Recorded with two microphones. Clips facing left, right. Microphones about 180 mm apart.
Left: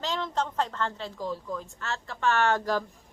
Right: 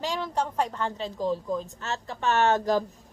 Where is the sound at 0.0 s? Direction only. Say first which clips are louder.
Right 1 dB; 10° right (ahead or behind).